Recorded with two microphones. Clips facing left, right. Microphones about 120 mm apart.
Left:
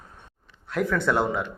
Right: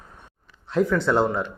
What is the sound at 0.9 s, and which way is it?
Speech, 15° right (ahead or behind).